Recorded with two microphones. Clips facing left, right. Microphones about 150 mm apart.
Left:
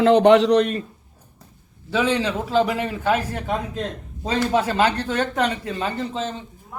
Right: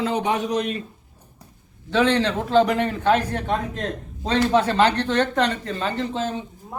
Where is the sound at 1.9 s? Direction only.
10° left (ahead or behind).